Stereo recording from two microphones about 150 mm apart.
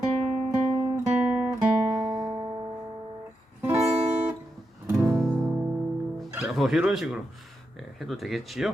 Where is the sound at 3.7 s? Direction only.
5° right (ahead or behind).